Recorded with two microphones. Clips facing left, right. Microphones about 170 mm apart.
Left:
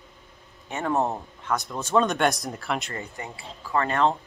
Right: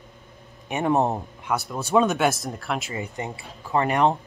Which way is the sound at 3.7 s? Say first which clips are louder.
Right 2 dB; 15° right (ahead or behind).